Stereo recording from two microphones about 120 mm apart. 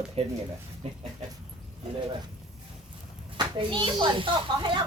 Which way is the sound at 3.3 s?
40° right (ahead or behind).